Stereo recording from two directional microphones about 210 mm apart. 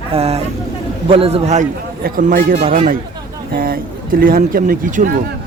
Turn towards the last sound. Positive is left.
turn(degrees=-40)  # may be behind; listen again after turning